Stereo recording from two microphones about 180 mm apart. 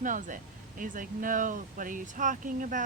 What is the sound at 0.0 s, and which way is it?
Speech, 45° right (ahead or behind).